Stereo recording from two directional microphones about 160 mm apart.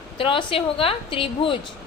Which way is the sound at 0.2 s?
35° left (ahead or behind).